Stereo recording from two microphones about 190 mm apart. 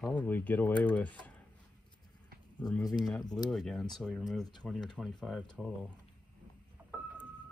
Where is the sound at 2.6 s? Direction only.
20° left (ahead or behind).